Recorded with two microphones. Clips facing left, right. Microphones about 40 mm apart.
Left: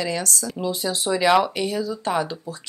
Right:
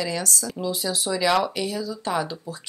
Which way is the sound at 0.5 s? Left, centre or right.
Centre.